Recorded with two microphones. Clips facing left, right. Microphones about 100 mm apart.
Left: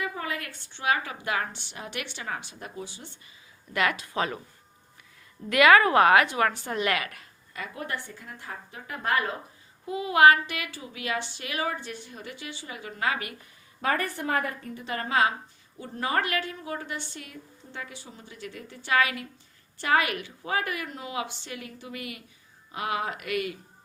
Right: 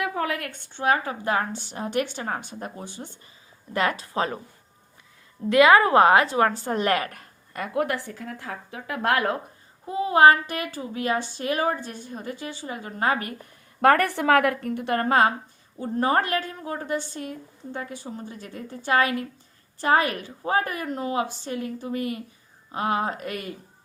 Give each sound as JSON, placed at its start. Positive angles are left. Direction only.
{"t": 0.0, "sound": "a woman's voice", "side_deg": -60}
{"t": 3.7, "sound": "speech", "side_deg": -35}
{"t": 5.4, "sound": "a woman's voice", "side_deg": -25}
{"t": 9.8, "sound": "speech", "side_deg": -35}
{"t": 13.8, "sound": "a woman's voice", "side_deg": -70}